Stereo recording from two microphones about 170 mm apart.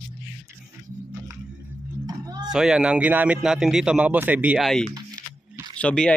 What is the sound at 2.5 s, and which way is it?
Speech, 5° right (ahead or behind).